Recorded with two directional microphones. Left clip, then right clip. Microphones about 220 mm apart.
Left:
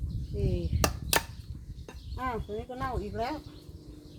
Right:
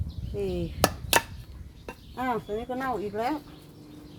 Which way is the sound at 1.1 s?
15° right (ahead or behind).